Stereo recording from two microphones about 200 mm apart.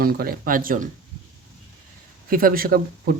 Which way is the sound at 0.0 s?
50° right (ahead or behind).